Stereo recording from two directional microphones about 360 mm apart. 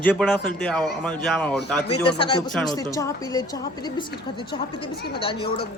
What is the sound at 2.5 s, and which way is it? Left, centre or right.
Speech, centre.